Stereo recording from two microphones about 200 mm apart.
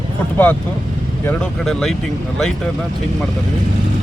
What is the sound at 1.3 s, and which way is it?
Speech, centre (ahead or behind).